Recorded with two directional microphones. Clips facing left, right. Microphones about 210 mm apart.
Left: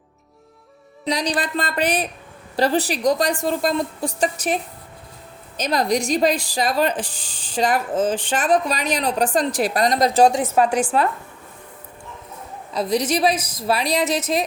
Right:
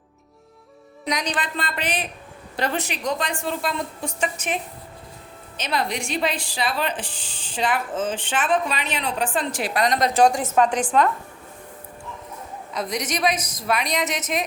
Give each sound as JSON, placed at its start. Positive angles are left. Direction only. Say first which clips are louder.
{"t": 1.0, "sound": "speech", "louder": "left 4 dB", "side_deg": 35}
{"t": 10.6, "sound": "a woman's voice", "louder": "even", "side_deg": 10}
{"t": 12.7, "sound": "speech", "louder": "left 7 dB", "side_deg": 30}